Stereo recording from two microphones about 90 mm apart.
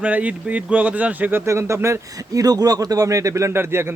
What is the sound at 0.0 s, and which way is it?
Speech, 15° right (ahead or behind).